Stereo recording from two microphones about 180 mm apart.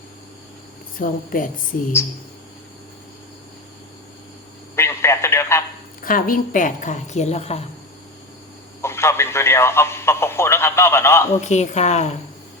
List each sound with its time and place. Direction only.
0.9 s a woman's voice: 50° left (ahead or behind)
4.7 s a sound: 15° left (ahead or behind)
6.0 s a woman's voice: 50° left (ahead or behind)
8.8 s speech: 15° left (ahead or behind)
11.3 s a woman's voice: 40° left (ahead or behind)